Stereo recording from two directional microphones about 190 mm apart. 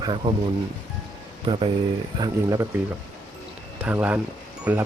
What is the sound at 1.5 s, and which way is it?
Speech, 25° right (ahead or behind).